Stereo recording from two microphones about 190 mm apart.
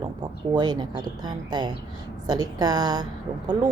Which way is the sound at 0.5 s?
20° right (ahead or behind).